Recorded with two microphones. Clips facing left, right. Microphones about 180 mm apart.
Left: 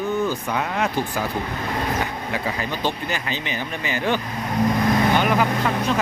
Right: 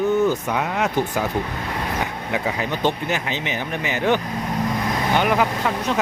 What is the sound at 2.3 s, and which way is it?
Speech, 20° right (ahead or behind).